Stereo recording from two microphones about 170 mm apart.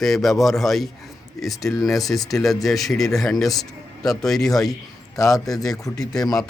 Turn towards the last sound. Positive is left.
turn(degrees=20)  # may be behind; listen again after turning